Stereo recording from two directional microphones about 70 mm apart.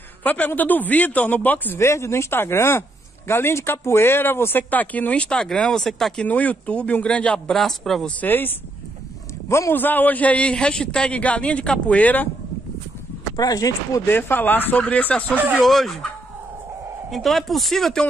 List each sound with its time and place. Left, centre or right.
0.2 s speech: left
1.8 s speech: left; by 6.2 s centre
6.2 s speech: left
7.3 s speech: centre
8.2 s speech: left
9.7 s speech: left
13.4 s speech: left
14.0 s speech: left
15.5 s speech: centre
17.1 s speech: centre